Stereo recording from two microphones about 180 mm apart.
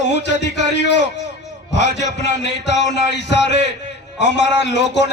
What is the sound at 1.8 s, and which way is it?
A man's voice, 75° left (ahead or behind).